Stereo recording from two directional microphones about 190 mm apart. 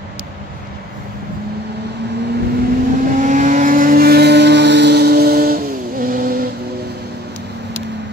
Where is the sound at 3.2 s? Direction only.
45° right (ahead or behind).